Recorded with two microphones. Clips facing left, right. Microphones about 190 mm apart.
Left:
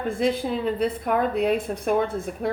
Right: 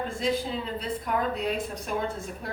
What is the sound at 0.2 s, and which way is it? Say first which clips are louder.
Speech: left 5 dB; 55° left (ahead or behind).